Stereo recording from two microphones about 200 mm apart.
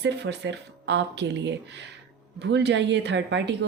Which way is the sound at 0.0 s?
60° right (ahead or behind).